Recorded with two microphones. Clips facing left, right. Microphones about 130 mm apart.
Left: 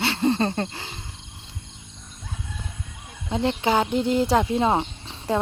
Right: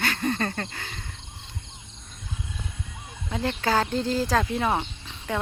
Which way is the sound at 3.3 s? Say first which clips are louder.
Left 3 dB; 20° left (ahead or behind).